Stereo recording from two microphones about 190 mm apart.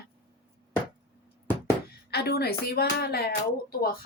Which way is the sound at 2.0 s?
60° left (ahead or behind).